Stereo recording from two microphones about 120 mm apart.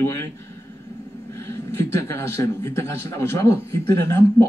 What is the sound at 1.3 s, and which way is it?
A man's voice, 20° left (ahead or behind).